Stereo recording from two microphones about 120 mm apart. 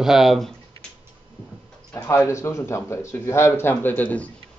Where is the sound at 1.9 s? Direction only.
25° left (ahead or behind).